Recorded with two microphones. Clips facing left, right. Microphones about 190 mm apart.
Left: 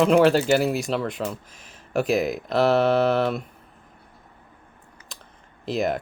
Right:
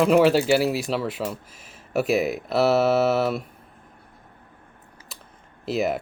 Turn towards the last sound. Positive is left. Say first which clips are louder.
# even
turn(degrees=-5)  # may be behind; listen again after turning